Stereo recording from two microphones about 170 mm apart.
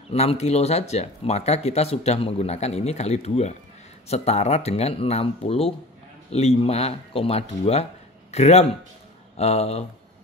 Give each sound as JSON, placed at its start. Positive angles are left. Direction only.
{"t": 0.1, "sound": "speech", "side_deg": 40}